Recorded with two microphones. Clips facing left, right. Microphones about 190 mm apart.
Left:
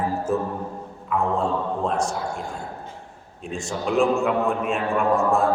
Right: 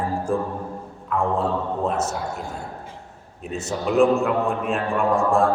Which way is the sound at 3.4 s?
5° right (ahead or behind).